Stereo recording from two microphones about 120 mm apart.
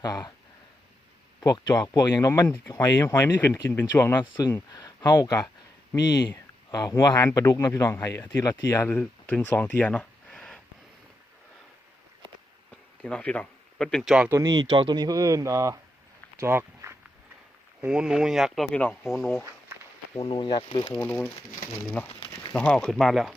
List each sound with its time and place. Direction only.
0.0 s speech: 30° left (ahead or behind)
1.4 s a man's voice: 35° left (ahead or behind)
6.7 s a man's voice: 35° left (ahead or behind); by 10.6 s 5° left (ahead or behind)
13.0 s speech: 10° left (ahead or behind)
14.3 s speech: 30° right (ahead or behind)
16.4 s walk: 20° right (ahead or behind)
17.7 s speech: 5° right (ahead or behind)
20.1 s speech: 45° left (ahead or behind)
20.9 s a man's voice: 15° left (ahead or behind)
22.1 s a sound: 40° left (ahead or behind)
22.5 s speech: 10° left (ahead or behind)